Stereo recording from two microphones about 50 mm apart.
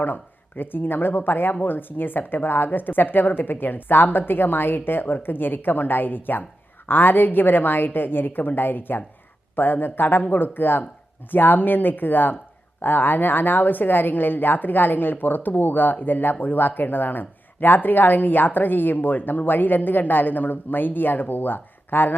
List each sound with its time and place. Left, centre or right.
0.0 s speech: left